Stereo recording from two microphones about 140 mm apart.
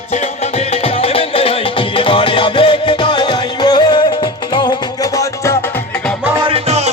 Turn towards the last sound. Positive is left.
turn(degrees=-50)  # may be behind; listen again after turning